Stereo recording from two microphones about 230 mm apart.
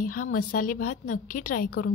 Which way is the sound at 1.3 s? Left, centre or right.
Left.